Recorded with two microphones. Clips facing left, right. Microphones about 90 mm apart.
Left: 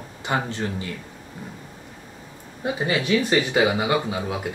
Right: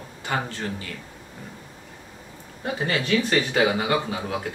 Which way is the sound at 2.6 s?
15° left (ahead or behind).